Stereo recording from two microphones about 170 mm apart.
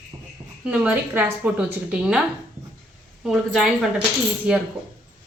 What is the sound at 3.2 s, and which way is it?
A woman's voice, centre (ahead or behind).